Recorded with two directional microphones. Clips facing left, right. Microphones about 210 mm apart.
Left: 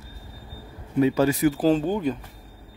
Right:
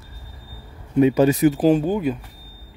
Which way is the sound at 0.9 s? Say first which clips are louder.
Right 4 dB; 20° right (ahead or behind).